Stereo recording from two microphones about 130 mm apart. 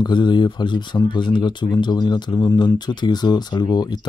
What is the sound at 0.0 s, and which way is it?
Speech, 35° left (ahead or behind).